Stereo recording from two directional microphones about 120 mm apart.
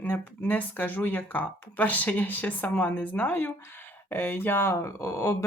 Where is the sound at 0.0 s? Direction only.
15° left (ahead or behind).